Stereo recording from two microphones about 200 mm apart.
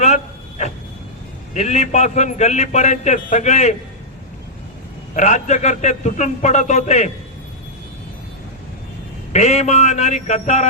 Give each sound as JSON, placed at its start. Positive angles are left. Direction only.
{"t": 1.5, "sound": "a man's voice", "side_deg": 35}
{"t": 5.1, "sound": "a man's voice", "side_deg": 35}
{"t": 9.3, "sound": "a man's voice", "side_deg": 35}